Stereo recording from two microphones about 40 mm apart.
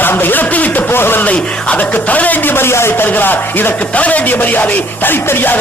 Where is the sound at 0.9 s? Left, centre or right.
Left.